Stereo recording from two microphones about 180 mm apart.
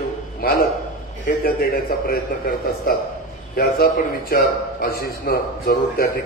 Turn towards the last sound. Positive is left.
turn(degrees=55)  # may be behind; listen again after turning